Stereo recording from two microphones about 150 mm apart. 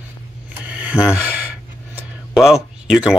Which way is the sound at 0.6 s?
10° right (ahead or behind).